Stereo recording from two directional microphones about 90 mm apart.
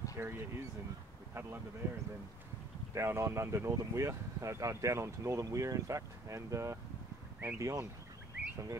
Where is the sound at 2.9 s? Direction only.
30° right (ahead or behind).